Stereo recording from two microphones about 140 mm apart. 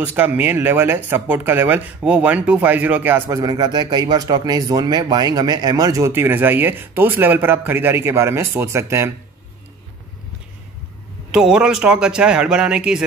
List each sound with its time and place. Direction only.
0.0 s speech: 15° right (ahead or behind)
11.3 s speech: 5° right (ahead or behind)